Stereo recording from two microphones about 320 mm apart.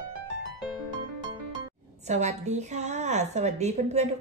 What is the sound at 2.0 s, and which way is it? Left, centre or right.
A woman's voice, right.